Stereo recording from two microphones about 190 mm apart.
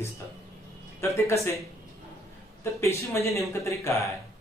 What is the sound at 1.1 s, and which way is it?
Speech, 15° left (ahead or behind).